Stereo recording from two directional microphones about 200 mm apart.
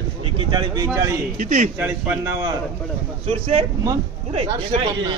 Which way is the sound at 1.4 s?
40° right (ahead or behind).